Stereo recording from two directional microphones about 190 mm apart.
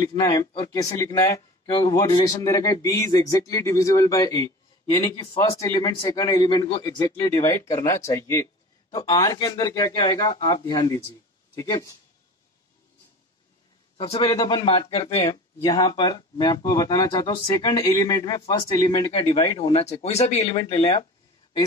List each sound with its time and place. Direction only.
0.1 s speech: 15° left (ahead or behind)
13.9 s a man's voice: 30° left (ahead or behind)
19.7 s speech: 35° left (ahead or behind)